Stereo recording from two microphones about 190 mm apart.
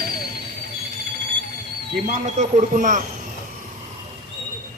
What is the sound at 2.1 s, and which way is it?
Speech, 40° right (ahead or behind).